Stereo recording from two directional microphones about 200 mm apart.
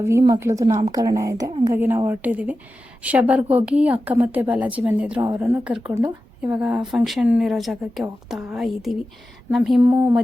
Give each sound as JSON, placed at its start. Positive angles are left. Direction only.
{"t": 0.0, "sound": "a woman's voice", "side_deg": -15}